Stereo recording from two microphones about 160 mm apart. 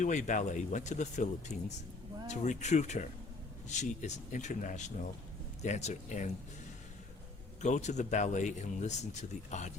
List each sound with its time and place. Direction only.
0.0 s speech: 50° left (ahead or behind)
7.6 s speech: 45° left (ahead or behind)